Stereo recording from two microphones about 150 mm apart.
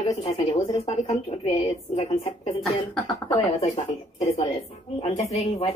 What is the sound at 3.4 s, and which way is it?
Speech, 35° left (ahead or behind).